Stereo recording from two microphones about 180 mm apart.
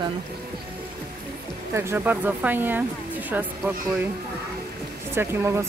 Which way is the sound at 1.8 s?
10° right (ahead or behind).